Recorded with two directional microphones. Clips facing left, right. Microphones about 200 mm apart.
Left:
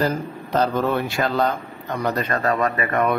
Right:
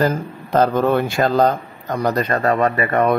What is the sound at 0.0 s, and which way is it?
A man's voice, 55° right (ahead or behind).